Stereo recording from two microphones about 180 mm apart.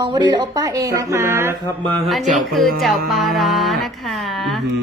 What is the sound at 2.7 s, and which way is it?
Music, centre (ahead or behind).